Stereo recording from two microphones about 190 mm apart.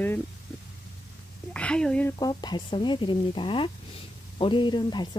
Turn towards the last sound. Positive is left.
turn(degrees=25)  # may be behind; listen again after turning